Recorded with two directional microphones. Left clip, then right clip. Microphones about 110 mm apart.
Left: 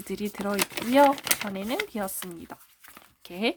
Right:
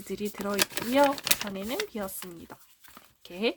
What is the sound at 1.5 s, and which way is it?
Speech, 30° left (ahead or behind).